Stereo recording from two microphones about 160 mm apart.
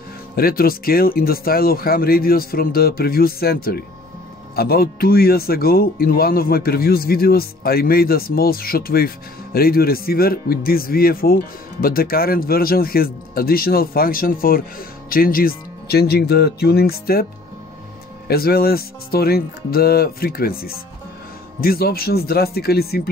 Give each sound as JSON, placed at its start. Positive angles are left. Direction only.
{"t": 0.4, "sound": "speech", "side_deg": 65}
{"t": 18.3, "sound": "speech", "side_deg": 70}